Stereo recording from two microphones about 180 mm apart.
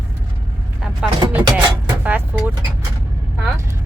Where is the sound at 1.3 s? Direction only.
5° right (ahead or behind).